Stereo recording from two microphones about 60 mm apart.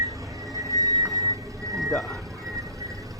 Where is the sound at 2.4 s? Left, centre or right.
Right.